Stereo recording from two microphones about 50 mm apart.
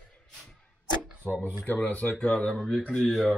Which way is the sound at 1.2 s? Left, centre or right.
Left.